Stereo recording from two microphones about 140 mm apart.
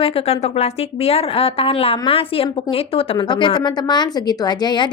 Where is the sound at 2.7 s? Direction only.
40° left (ahead or behind).